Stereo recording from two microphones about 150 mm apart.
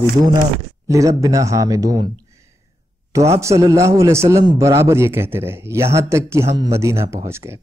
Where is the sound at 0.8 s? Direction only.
20° right (ahead or behind).